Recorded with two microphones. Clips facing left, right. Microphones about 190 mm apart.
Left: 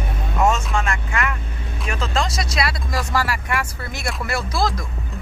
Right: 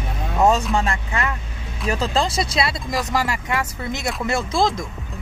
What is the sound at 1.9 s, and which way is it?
Speech, 35° right (ahead or behind).